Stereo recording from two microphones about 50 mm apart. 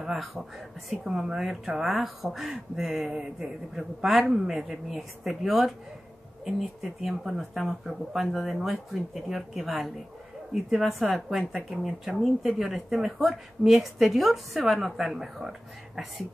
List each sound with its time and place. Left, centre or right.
0.0 s speech: centre